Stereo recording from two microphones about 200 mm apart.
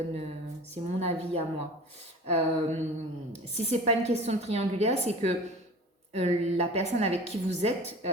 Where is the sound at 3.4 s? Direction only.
35° right (ahead or behind).